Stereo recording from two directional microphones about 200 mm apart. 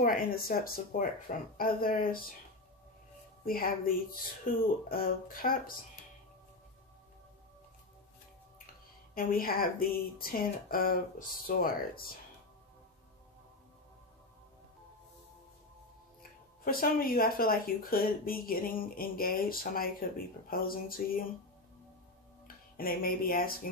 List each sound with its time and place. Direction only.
0.0 s speech: 45° left (ahead or behind)
3.4 s speech: 45° left (ahead or behind)
9.1 s speech: 45° left (ahead or behind)
16.2 s speech: 45° left (ahead or behind)
22.8 s speech: 45° left (ahead or behind)